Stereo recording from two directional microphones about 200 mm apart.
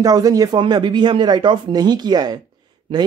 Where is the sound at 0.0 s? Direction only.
20° right (ahead or behind).